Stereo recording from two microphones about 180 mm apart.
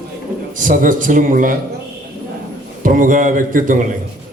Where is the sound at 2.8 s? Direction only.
50° right (ahead or behind).